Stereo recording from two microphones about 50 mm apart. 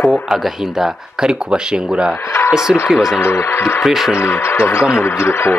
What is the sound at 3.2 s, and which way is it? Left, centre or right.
Speech, left.